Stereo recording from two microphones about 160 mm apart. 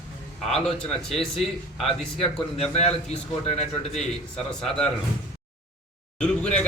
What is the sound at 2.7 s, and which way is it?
Speech, 40° left (ahead or behind).